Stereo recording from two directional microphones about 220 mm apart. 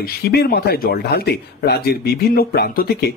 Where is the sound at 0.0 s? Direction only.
45° left (ahead or behind).